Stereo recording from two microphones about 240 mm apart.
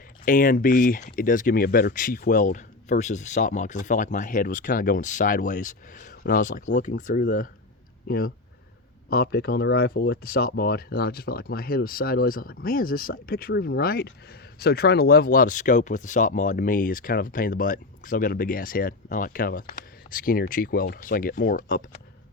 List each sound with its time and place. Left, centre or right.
0.3 s speech: left